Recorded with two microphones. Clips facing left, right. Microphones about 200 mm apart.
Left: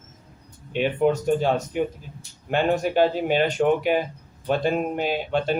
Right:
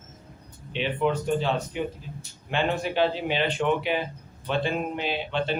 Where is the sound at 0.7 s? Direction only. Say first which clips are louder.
Left 5 dB; 45° left (ahead or behind).